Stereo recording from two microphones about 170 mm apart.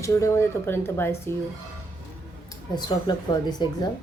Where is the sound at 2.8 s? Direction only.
25° left (ahead or behind).